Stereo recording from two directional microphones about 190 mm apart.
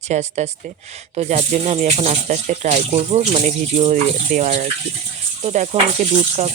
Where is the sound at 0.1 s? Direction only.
35° right (ahead or behind).